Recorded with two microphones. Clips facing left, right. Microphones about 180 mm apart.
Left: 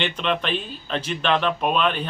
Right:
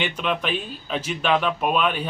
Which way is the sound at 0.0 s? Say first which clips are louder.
Left 1 dB; 10° right (ahead or behind).